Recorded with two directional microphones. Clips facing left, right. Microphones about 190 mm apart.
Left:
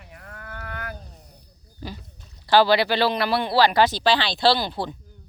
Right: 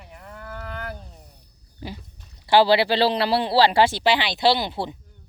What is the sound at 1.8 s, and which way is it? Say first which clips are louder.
Speech: right 1 dB; 20° right (ahead or behind).